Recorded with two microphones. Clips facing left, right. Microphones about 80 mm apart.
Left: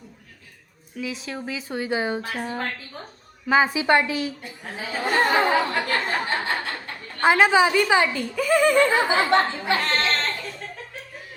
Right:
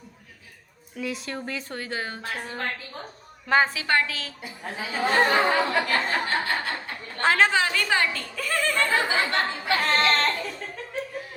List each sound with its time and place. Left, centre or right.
0.9 s speech: centre
1.8 s a woman's voice: centre
3.8 s a woman's voice: centre
4.4 s speech: centre
6.2 s a woman's voice: centre
10.1 s music: centre